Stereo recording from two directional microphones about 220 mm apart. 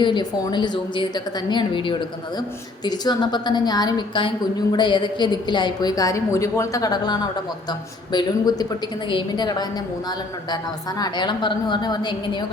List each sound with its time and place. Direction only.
0.0 s a woman's voice: 20° left (ahead or behind)